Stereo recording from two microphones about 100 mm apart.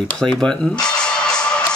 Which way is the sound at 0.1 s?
5° left (ahead or behind).